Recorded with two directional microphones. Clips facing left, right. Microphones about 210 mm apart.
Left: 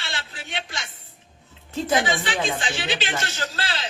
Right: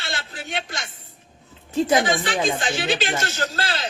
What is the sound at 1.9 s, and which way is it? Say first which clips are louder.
A man's voice: right 1 dB; 45° right (ahead or behind).